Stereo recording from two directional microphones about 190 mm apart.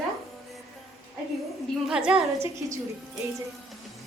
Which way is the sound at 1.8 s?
5° right (ahead or behind).